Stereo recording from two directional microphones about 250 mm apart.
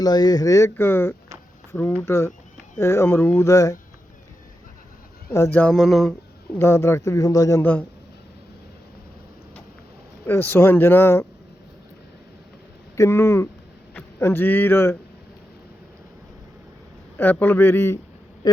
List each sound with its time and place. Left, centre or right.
0.0 s speech: centre
5.3 s speech: centre
6.6 s speech: centre
10.2 s speech: centre
13.0 s a man's voice: centre
17.2 s speech: centre
18.4 s a sound: centre